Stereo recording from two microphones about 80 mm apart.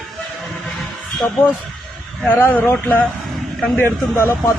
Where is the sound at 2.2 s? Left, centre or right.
Left.